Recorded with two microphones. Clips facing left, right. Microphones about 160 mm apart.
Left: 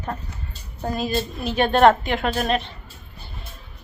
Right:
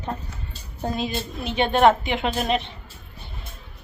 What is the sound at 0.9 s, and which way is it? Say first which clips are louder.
A woman's voice: left 6 dB; 20° right (ahead or behind).